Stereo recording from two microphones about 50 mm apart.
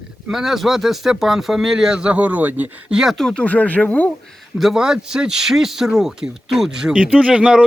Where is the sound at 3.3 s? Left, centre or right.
Left.